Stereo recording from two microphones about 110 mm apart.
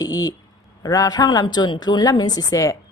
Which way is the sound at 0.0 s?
35° left (ahead or behind).